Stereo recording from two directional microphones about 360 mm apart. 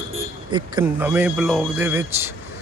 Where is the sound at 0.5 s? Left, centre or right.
Centre.